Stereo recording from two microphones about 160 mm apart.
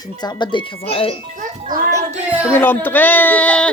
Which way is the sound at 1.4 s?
60° right (ahead or behind).